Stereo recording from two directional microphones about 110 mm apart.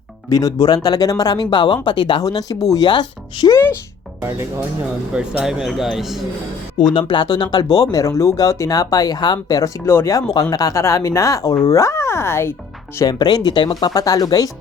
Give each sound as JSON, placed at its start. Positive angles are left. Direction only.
{"t": 0.3, "sound": "speech", "side_deg": 35}
{"t": 4.2, "sound": "speech", "side_deg": -25}
{"t": 5.4, "sound": "speech", "side_deg": -5}
{"t": 6.9, "sound": "speech", "side_deg": 45}
{"t": 9.8, "sound": "speech", "side_deg": 25}
{"t": 13.0, "sound": "speech", "side_deg": 40}